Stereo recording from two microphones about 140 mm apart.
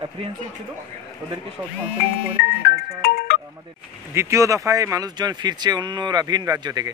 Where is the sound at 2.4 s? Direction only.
90° left.